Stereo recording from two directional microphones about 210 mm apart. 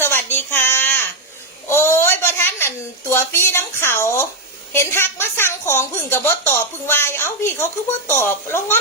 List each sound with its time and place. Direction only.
0.0 s child singing: 10° left (ahead or behind)
1.7 s a sound: 10° left (ahead or behind)
4.7 s a woman's voice: 10° left (ahead or behind)